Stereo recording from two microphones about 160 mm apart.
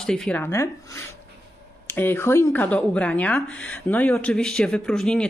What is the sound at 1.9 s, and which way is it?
Speech, 15° left (ahead or behind).